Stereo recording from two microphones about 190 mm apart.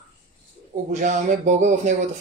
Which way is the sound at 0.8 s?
45° right (ahead or behind).